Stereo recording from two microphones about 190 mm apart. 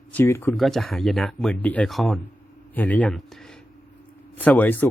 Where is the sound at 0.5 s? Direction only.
Centre (ahead or behind).